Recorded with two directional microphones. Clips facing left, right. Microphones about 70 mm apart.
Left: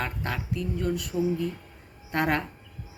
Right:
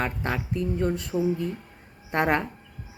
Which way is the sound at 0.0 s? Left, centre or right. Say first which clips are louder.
Right 3 dB; right.